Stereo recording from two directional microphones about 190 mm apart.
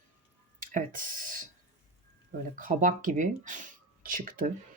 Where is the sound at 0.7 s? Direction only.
45° right (ahead or behind).